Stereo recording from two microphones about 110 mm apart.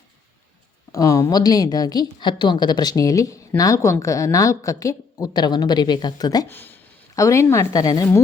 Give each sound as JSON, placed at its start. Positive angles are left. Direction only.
{"t": 0.9, "sound": "a woman's voice", "side_deg": 30}
{"t": 5.2, "sound": "a woman's voice", "side_deg": 40}
{"t": 6.5, "sound": "speech", "side_deg": 20}